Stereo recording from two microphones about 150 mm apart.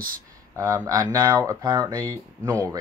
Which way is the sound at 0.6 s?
20° right (ahead or behind).